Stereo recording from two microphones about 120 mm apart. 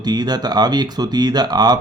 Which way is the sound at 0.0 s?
35° right (ahead or behind).